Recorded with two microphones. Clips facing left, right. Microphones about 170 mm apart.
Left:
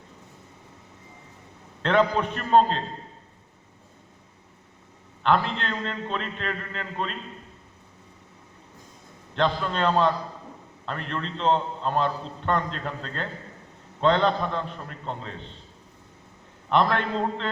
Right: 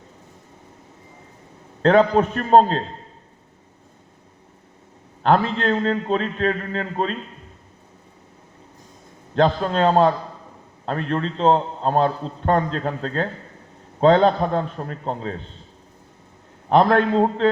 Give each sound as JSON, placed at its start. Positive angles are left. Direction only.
{"t": 1.8, "sound": "a man's voice", "side_deg": -40}
{"t": 5.2, "sound": "a man's voice", "side_deg": -40}
{"t": 9.3, "sound": "a man's voice", "side_deg": -40}
{"t": 16.6, "sound": "a man's voice", "side_deg": -40}